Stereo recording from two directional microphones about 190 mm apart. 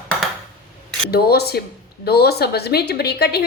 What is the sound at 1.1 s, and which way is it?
Speech, 55° left (ahead or behind).